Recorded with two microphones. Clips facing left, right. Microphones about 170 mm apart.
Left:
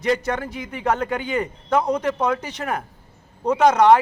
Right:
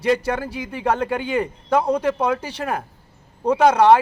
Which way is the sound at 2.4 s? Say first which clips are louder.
Right 2 dB; 30° right (ahead or behind).